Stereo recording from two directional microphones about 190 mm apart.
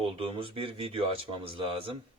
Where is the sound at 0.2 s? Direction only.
30° right (ahead or behind).